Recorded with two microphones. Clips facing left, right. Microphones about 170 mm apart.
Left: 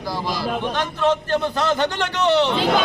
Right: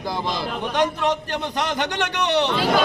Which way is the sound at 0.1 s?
20° right (ahead or behind).